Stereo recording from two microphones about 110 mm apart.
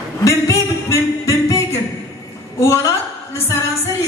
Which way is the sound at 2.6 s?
30° left (ahead or behind).